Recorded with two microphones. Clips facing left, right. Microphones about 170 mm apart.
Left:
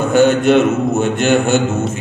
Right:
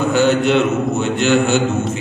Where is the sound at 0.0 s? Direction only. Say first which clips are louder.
Left 3 dB; 50° left (ahead or behind).